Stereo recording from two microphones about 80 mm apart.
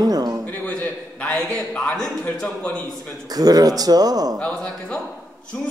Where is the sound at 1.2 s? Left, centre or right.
Centre.